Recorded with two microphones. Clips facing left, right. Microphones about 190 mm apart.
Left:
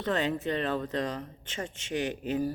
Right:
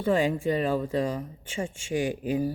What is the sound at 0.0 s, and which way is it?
Speech, 10° right (ahead or behind).